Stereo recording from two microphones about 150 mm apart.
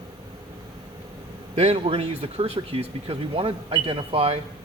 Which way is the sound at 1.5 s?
45° right (ahead or behind).